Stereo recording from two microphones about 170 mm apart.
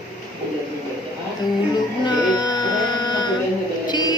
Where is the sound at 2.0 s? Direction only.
25° left (ahead or behind).